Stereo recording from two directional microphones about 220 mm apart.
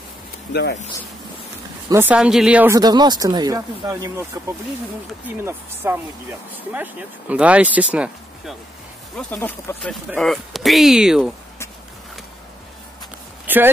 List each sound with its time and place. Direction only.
0.5 s speech: 50° left (ahead or behind)
1.9 s speech: 10° right (ahead or behind)
5.4 s speech: 10° right (ahead or behind)
9.1 s speech: 10° left (ahead or behind)
13.5 s speech: 10° right (ahead or behind)